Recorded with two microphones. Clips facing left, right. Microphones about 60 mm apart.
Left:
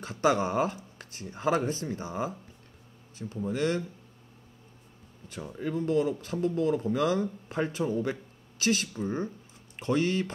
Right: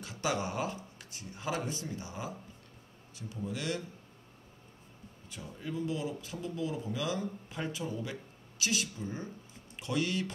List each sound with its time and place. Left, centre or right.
0.0 s speech: left
5.3 s speech: left